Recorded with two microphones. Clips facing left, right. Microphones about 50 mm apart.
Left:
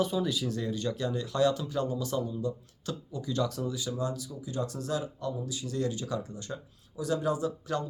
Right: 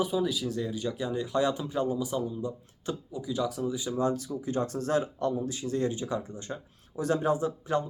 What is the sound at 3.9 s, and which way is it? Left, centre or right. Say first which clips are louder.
Speech: right 5 dB; right.